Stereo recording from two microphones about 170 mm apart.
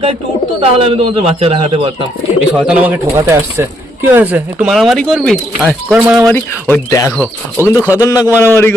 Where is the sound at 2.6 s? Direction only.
5° right (ahead or behind).